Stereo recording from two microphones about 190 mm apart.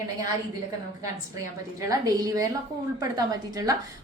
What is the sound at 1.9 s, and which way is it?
Speech, 20° right (ahead or behind).